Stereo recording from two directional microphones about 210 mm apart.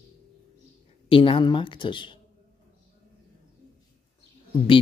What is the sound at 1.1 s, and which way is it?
A man's voice, 25° left (ahead or behind).